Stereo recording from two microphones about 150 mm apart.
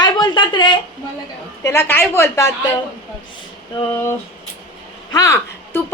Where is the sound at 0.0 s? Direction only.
30° left (ahead or behind).